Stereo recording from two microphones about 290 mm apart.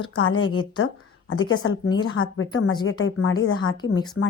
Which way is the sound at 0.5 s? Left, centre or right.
Left.